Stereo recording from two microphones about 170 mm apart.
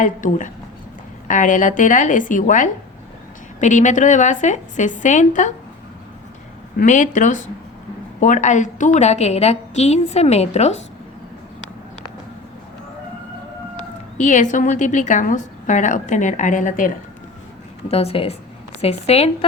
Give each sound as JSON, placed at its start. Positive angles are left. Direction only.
{"t": 0.0, "sound": "a woman's voice", "side_deg": 50}
{"t": 6.7, "sound": "a woman's voice", "side_deg": 45}
{"t": 13.7, "sound": "speech", "side_deg": 45}
{"t": 17.8, "sound": "a woman's voice", "side_deg": 35}